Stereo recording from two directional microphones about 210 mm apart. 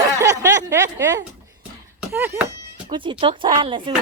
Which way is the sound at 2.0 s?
10° right (ahead or behind).